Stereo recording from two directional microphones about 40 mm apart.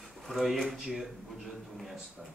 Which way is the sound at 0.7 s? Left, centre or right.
Centre.